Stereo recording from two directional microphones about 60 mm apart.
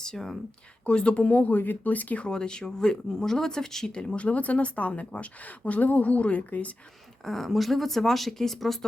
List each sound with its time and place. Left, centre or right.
0.0 s speech: centre; by 6.7 s left
7.3 s speech: centre